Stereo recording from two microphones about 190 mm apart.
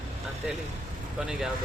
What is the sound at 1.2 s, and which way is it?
Speech, 5° right (ahead or behind).